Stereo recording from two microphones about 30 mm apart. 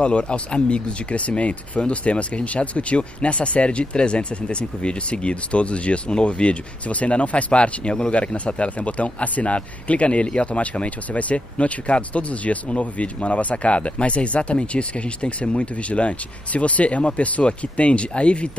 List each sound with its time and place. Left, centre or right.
0.0 s a man's voice: left